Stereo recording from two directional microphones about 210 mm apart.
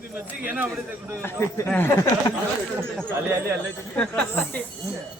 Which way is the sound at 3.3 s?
10° right (ahead or behind).